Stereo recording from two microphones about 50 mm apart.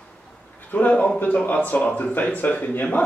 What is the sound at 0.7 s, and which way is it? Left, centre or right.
A man's voice, left.